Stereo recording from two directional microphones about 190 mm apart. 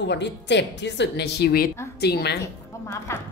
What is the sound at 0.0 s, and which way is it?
A woman's voice, 65° left (ahead or behind).